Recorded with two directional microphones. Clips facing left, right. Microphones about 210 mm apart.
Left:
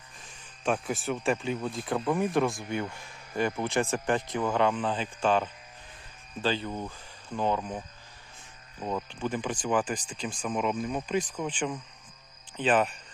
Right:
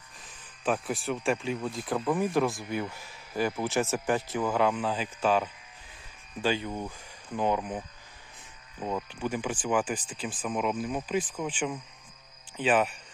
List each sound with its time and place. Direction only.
0.3 s speech: centre (ahead or behind)
6.7 s speech: centre (ahead or behind)
7.3 s speech: 15° right (ahead or behind)
8.8 s speech: 5° right (ahead or behind)